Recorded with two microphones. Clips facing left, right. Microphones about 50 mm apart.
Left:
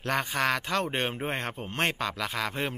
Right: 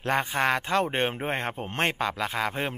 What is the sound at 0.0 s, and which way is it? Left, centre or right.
Speech, right.